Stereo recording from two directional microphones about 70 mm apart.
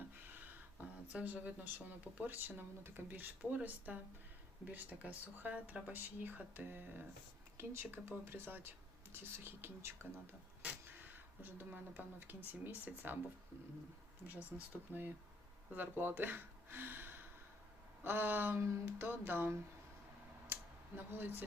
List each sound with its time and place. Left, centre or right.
0.3 s speech: right
14.5 s speech: centre
14.9 s speech: right
20.5 s a sound: right